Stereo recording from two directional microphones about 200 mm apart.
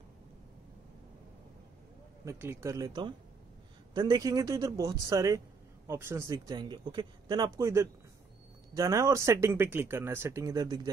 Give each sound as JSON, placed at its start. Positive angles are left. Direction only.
{"t": 2.2, "sound": "speech", "side_deg": -15}